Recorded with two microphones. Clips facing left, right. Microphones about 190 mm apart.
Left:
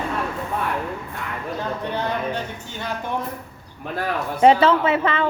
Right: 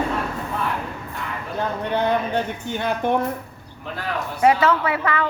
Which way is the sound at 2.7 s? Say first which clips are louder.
Right 8 dB; 60° right (ahead or behind).